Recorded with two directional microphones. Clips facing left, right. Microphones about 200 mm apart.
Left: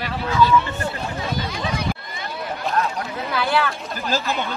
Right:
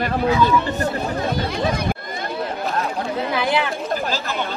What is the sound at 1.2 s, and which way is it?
Speech, 55° right (ahead or behind).